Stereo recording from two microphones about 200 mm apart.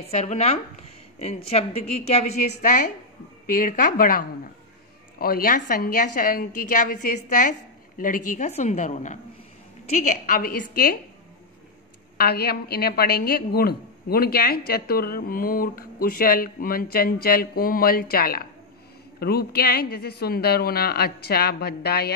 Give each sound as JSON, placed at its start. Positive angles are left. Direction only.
{"t": 0.1, "sound": "a woman's voice", "side_deg": 35}
{"t": 2.6, "sound": "a woman's voice", "side_deg": 45}
{"t": 12.2, "sound": "a woman's voice", "side_deg": 50}